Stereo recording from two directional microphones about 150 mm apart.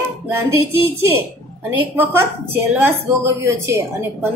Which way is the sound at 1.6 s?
15° right (ahead or behind).